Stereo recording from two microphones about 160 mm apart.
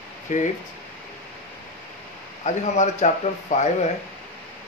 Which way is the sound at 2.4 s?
45° left (ahead or behind).